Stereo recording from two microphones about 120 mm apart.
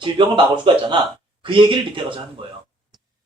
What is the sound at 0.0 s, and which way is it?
A man's voice, 40° right (ahead or behind).